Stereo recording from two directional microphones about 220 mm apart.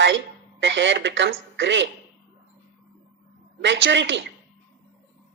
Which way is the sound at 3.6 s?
55° right (ahead or behind).